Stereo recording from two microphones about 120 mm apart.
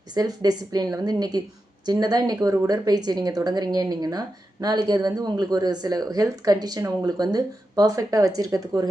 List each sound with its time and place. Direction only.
0.1 s a woman's voice: 35° right (ahead or behind)